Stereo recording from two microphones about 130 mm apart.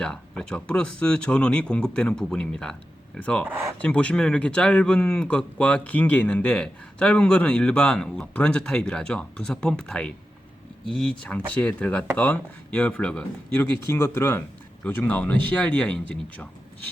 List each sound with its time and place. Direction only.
0.0 s speech: 5° left (ahead or behind)
3.4 s speech: 20° right (ahead or behind)
3.8 s speech: 10° left (ahead or behind)
11.2 s speech: 10° left (ahead or behind)